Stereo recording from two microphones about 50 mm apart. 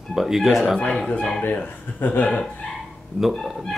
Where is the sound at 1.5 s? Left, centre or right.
Left.